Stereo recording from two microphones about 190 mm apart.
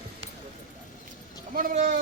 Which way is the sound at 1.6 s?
45° right (ahead or behind).